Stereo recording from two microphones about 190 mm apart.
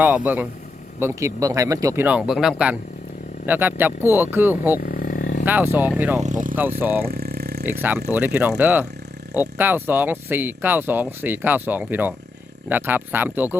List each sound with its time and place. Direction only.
0.0 s speech: 10° right (ahead or behind)
4.8 s a sound: 45° left (ahead or behind)
5.5 s speech: 10° right (ahead or behind)
6.2 s vehicle: 45° right (ahead or behind)
6.6 s speech: 10° right (ahead or behind)
7.1 s a sound: 55° right (ahead or behind)
7.6 s speech: 10° right (ahead or behind)